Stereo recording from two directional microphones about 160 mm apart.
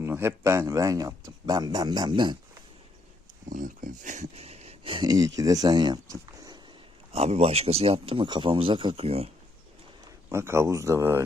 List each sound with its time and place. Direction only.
0.0 s speech: 15° right (ahead or behind)
3.5 s speech: 55° right (ahead or behind); by 6.6 s 25° right (ahead or behind)
7.1 s speech: 40° right (ahead or behind)
10.2 s speech: 15° right (ahead or behind)